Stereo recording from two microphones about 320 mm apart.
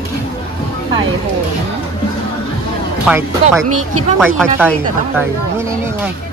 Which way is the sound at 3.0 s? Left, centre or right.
Centre.